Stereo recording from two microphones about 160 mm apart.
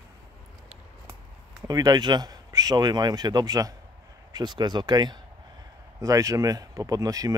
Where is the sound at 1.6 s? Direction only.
25° right (ahead or behind).